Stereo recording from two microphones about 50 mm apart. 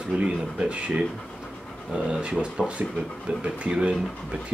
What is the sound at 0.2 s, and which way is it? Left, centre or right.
Speech, right.